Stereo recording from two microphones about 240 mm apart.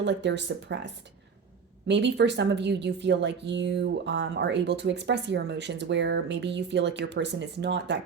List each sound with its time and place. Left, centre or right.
0.0 s speech: right
1.9 s speech: right